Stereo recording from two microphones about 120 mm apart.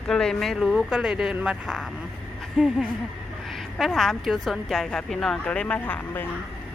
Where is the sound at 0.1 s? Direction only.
5° left (ahead or behind).